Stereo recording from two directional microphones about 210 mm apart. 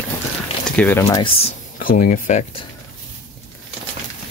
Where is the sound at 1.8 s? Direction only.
40° left (ahead or behind).